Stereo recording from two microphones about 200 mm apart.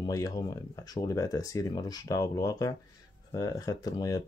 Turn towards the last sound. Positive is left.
turn(degrees=20)  # may be behind; listen again after turning